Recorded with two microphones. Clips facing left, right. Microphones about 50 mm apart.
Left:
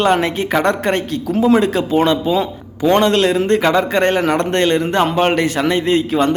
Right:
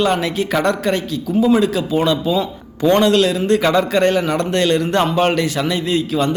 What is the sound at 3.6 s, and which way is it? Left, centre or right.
A man's voice, left.